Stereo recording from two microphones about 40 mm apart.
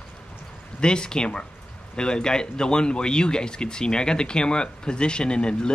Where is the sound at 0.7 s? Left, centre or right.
Left.